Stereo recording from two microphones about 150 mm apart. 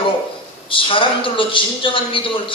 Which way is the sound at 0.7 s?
35° left (ahead or behind).